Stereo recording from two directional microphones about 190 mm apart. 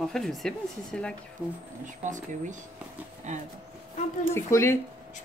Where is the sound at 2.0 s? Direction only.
40° right (ahead or behind).